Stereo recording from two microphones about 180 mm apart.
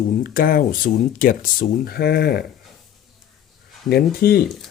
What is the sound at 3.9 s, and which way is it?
Speech, 60° left (ahead or behind).